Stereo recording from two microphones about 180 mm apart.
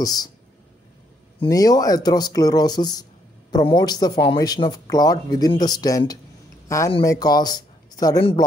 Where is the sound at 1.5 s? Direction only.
20° left (ahead or behind).